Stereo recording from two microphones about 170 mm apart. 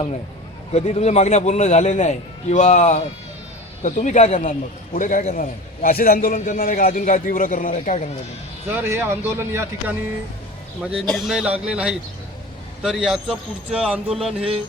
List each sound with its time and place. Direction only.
0.7 s a man's voice: 40° left (ahead or behind)
8.7 s speech: 15° right (ahead or behind)
11.1 s speech: centre (ahead or behind)